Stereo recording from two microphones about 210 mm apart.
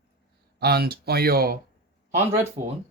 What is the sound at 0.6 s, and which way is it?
Speech, 50° right (ahead or behind).